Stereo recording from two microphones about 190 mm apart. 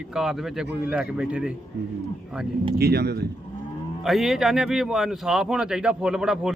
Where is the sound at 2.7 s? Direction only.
55° right (ahead or behind).